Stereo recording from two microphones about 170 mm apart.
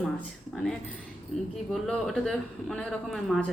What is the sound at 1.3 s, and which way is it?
A woman's voice, centre (ahead or behind).